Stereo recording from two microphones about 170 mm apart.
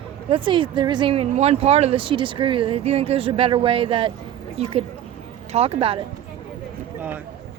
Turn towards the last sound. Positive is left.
turn(degrees=-35)  # may be behind; listen again after turning